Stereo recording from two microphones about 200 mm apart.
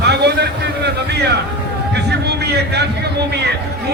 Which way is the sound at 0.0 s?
55° right (ahead or behind).